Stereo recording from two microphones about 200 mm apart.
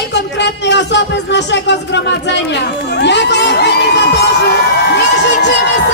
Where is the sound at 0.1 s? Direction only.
60° left (ahead or behind).